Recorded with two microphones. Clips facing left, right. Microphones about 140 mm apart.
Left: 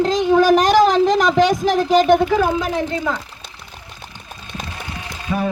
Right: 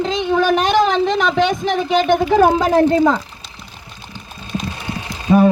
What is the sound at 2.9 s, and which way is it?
Speech, 35° right (ahead or behind).